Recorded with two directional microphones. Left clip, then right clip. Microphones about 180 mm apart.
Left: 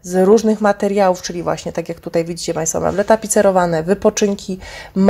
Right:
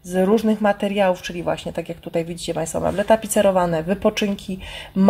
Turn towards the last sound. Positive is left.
turn(degrees=30)  # may be behind; listen again after turning